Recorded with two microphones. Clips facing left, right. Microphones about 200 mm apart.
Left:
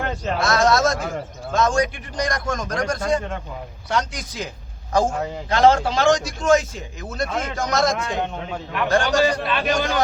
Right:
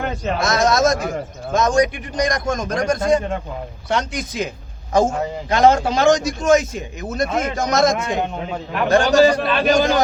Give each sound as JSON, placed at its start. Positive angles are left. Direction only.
{"t": 0.3, "sound": "a man's voice", "side_deg": -20}
{"t": 8.2, "sound": "a man's voice", "side_deg": -5}
{"t": 9.0, "sound": "a man's voice", "side_deg": -40}